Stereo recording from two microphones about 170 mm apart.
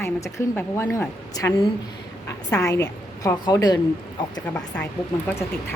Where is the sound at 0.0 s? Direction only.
15° left (ahead or behind).